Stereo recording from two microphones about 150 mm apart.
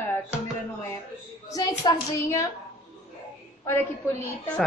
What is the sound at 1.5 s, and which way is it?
A child's voice, 25° left (ahead or behind).